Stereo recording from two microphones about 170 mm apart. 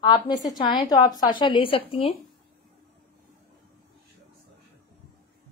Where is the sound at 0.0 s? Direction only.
25° left (ahead or behind).